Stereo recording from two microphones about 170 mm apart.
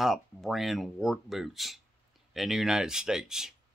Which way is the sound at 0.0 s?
Centre (ahead or behind).